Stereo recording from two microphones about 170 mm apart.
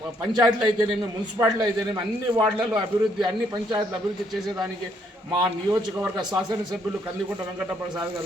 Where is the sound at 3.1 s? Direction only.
25° right (ahead or behind).